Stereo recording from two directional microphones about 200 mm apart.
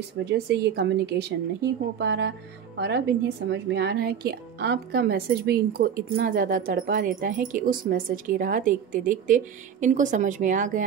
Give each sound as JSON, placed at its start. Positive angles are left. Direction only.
{"t": 0.2, "sound": "speech", "side_deg": -55}
{"t": 3.4, "sound": "speech", "side_deg": -55}